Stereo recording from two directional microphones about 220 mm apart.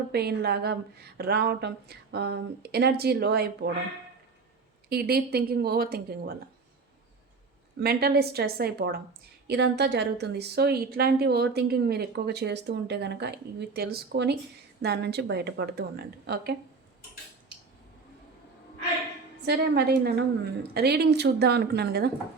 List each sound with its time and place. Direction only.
0.1 s a woman's voice: 45° right (ahead or behind)
4.9 s a woman's voice: 45° right (ahead or behind)
7.8 s a woman's voice: 45° right (ahead or behind)
19.5 s a woman's voice: 50° right (ahead or behind)